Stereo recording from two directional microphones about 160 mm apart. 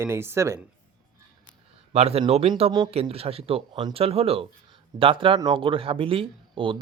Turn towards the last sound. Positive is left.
turn(degrees=-30)  # may be behind; listen again after turning